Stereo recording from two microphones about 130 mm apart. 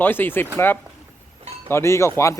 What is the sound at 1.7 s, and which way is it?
Speech, 20° left (ahead or behind).